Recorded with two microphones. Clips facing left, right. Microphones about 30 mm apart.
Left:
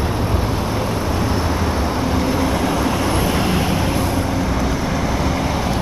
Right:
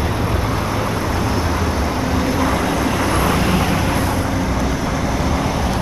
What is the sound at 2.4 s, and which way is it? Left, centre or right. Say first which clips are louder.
Train: right 1 dB; right.